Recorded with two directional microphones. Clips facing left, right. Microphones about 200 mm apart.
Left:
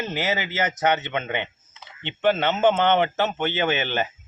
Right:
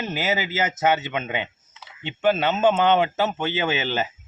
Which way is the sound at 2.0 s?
5° right (ahead or behind).